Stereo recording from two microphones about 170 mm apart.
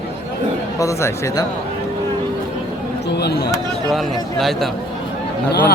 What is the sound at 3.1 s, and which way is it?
Speech, 75° left (ahead or behind).